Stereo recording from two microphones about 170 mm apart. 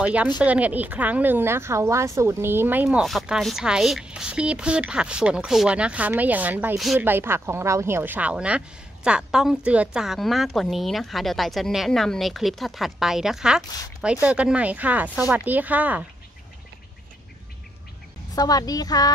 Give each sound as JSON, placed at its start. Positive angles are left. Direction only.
{"t": 0.0, "sound": "a woman's voice", "side_deg": -5}
{"t": 7.1, "sound": "a woman's voice", "side_deg": -15}
{"t": 18.3, "sound": "a woman's voice", "side_deg": 20}